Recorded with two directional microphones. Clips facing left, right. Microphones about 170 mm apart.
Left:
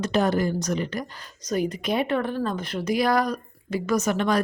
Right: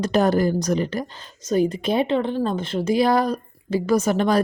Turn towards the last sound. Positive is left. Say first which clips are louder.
# right 4 dB
turn(degrees=-35)  # may be behind; listen again after turning